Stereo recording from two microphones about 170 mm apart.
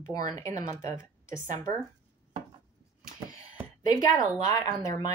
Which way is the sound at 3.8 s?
20° left (ahead or behind).